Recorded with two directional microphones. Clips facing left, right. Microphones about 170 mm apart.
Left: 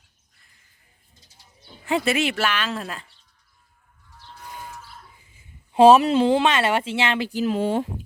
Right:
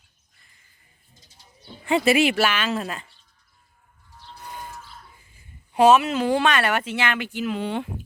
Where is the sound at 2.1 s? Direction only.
10° right (ahead or behind).